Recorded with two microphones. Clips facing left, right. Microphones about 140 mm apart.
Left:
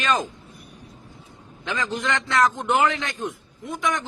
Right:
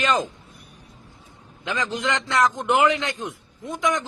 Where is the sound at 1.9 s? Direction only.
15° right (ahead or behind).